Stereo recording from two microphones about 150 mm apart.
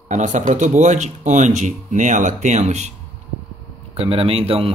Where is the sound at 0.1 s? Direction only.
55° right (ahead or behind).